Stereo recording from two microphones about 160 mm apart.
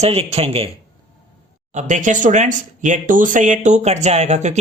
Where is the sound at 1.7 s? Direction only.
50° right (ahead or behind).